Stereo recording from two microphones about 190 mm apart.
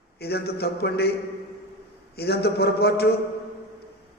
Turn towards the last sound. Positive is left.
turn(degrees=55)  # may be behind; listen again after turning